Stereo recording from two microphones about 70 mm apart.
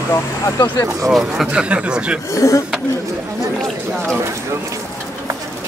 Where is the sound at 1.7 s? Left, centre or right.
Centre.